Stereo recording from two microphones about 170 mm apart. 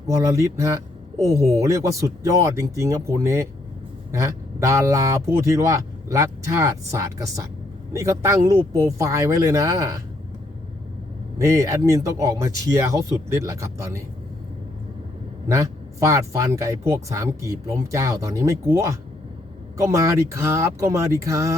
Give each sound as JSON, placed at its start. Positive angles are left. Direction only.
{"t": 0.1, "sound": "speech", "side_deg": -15}
{"t": 11.3, "sound": "speech", "side_deg": -20}
{"t": 15.4, "sound": "speech", "side_deg": -20}